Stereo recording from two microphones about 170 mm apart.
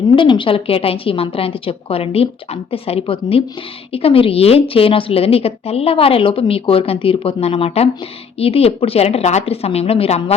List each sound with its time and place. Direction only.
0.2 s a woman's voice: 30° left (ahead or behind)